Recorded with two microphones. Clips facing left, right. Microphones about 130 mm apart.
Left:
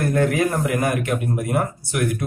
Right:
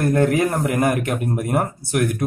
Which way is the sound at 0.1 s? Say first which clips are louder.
Right 1 dB; 35° right (ahead or behind).